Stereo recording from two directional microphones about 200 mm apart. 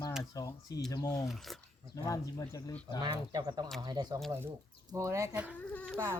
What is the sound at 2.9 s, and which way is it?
Speech, 20° right (ahead or behind).